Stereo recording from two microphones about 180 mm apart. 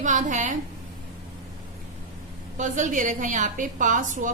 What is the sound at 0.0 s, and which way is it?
Speech, 40° right (ahead or behind).